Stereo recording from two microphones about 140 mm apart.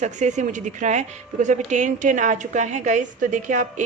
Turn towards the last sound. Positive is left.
turn(degrees=-65)  # may be behind; listen again after turning